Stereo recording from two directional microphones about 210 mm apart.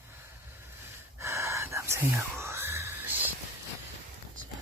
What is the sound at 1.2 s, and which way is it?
Whispering, 15° right (ahead or behind).